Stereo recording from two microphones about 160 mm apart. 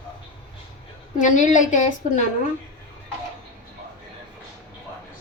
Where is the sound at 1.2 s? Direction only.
50° left (ahead or behind).